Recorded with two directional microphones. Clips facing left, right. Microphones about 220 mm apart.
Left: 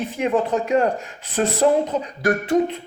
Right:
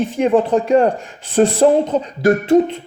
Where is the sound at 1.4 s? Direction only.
30° right (ahead or behind).